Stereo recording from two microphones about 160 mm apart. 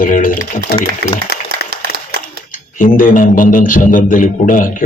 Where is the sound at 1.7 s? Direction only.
80° right.